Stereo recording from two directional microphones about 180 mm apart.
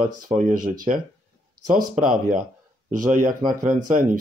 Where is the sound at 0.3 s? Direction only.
45° right (ahead or behind).